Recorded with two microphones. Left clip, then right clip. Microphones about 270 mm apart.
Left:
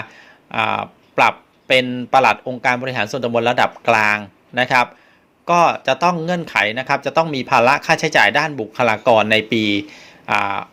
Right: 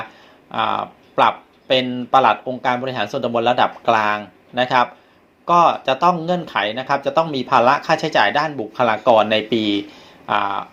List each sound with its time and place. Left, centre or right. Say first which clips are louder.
0.5 s speech: left 1 dB; left